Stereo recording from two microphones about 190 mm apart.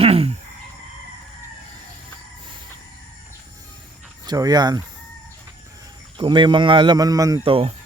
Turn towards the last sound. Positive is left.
turn(degrees=-30)  # may be behind; listen again after turning